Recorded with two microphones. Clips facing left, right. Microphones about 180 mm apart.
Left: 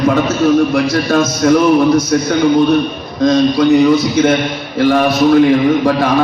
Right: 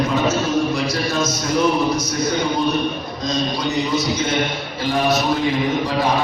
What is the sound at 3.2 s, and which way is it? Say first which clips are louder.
A man's voice: left 12 dB; 60° left (ahead or behind).